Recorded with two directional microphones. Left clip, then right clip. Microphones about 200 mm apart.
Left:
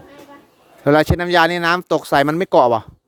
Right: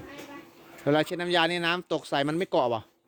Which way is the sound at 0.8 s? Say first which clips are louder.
Left 11 dB; 35° left (ahead or behind).